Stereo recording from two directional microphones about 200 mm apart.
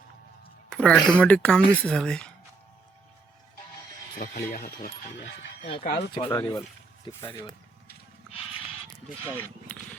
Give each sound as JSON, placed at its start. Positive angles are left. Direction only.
{"t": 0.7, "sound": "speech", "side_deg": 5}
{"t": 4.2, "sound": "speech", "side_deg": 40}
{"t": 5.9, "sound": "speech", "side_deg": 20}